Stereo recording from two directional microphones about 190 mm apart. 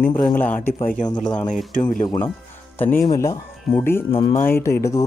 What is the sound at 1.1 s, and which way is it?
Speech, 5° left (ahead or behind).